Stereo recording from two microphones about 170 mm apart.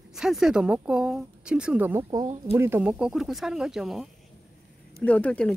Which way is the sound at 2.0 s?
20° right (ahead or behind).